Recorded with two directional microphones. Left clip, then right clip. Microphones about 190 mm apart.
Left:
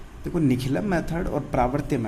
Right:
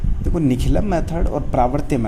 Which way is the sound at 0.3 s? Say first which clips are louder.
Right 4 dB; 15° right (ahead or behind).